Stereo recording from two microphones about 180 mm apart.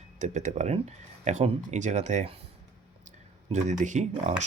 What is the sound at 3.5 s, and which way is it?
Speech, 40° right (ahead or behind).